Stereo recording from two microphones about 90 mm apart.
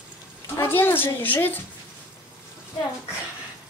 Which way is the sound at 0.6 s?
25° left (ahead or behind).